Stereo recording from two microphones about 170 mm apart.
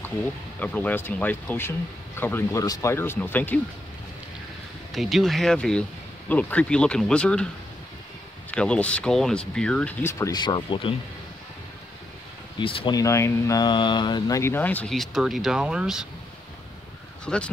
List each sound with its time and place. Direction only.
0.0 s speech: 10° left (ahead or behind)
4.9 s speech: centre (ahead or behind)
8.5 s speech: 5° left (ahead or behind); by 11.0 s 30° left (ahead or behind)
12.5 s speech: 30° left (ahead or behind); by 16.1 s 5° right (ahead or behind)
17.2 s speech: 5° left (ahead or behind)